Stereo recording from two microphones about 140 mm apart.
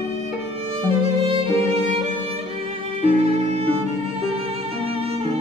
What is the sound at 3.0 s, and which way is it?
Music, 45° right (ahead or behind).